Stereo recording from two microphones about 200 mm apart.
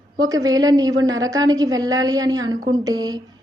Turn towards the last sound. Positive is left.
turn(degrees=-20)  # may be behind; listen again after turning